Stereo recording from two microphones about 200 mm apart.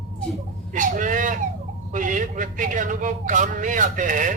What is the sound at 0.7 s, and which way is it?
A man's voice, 40° right (ahead or behind).